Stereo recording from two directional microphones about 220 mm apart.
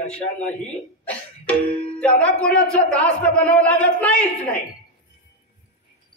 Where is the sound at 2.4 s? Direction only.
5° left (ahead or behind).